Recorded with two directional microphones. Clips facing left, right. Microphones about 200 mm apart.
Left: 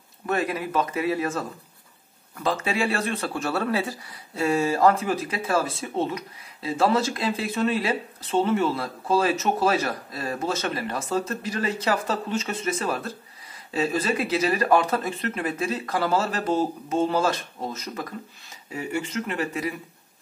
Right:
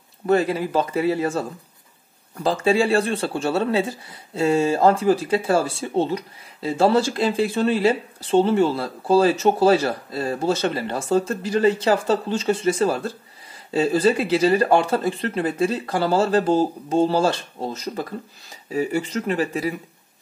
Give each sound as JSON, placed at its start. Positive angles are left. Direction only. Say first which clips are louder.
{"t": 0.3, "sound": "speech", "louder": "right 6 dB", "side_deg": -30}